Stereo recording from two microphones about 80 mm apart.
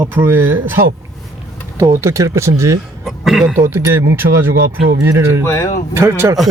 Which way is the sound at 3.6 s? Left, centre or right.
Right.